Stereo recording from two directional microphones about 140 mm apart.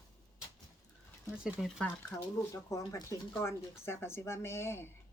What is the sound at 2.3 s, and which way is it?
Speech, 25° left (ahead or behind).